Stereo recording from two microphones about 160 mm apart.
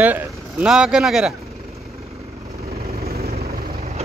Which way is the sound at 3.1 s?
70° right (ahead or behind).